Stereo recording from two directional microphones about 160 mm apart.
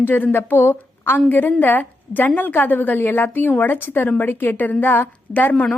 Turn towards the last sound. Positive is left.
turn(degrees=10)  # may be behind; listen again after turning